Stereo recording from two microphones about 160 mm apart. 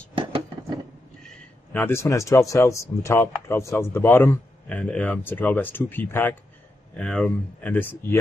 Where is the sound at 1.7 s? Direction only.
15° left (ahead or behind).